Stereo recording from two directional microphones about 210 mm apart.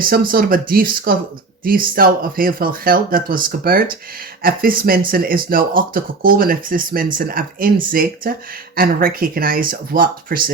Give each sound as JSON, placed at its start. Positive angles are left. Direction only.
{"t": 0.0, "sound": "speech", "side_deg": -45}